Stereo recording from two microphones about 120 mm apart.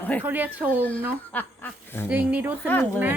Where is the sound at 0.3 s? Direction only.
15° right (ahead or behind).